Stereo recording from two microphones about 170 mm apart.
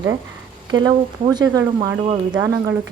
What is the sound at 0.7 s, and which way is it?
A woman's voice, 25° right (ahead or behind).